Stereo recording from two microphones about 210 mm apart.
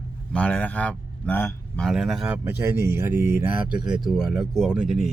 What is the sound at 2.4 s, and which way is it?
Speech, 10° right (ahead or behind).